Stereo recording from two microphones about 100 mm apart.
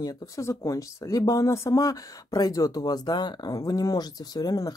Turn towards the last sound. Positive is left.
turn(degrees=40)  # may be behind; listen again after turning